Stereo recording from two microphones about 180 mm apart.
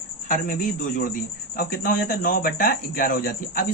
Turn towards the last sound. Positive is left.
turn(degrees=50)  # may be behind; listen again after turning